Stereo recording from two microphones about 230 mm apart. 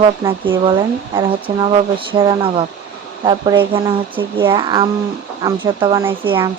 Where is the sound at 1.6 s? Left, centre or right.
Right.